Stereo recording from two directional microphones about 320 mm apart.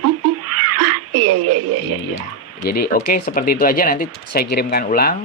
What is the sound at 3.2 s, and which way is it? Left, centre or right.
Speech, left.